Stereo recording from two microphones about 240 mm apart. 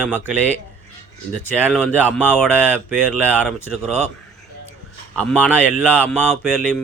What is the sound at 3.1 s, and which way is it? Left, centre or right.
Speech, centre.